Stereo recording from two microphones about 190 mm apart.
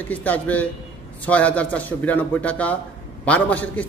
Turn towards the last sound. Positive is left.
turn(degrees=10)  # may be behind; listen again after turning